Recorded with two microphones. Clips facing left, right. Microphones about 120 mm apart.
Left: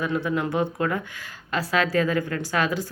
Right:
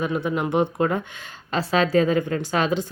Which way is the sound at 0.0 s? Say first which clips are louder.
Right 1 dB; 20° right (ahead or behind).